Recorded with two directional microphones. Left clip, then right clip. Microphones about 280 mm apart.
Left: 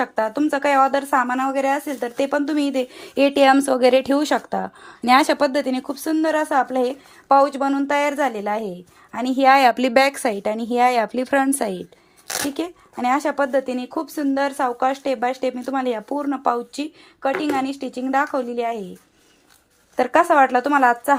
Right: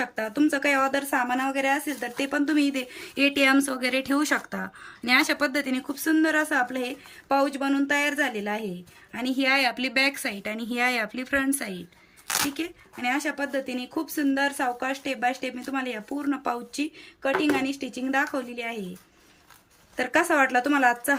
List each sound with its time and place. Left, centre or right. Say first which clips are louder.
0.0 s speech: left 5 dB; centre
20.0 s speech: left 7 dB; centre